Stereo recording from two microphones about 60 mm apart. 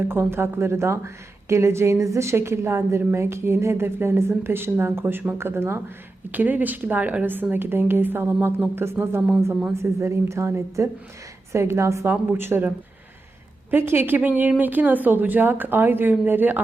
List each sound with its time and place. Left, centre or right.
0.1 s a woman's voice: right
6.3 s a woman's voice: right
12.0 s speech: right